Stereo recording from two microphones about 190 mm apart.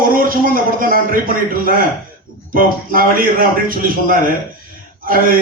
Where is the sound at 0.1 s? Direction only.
50° right (ahead or behind).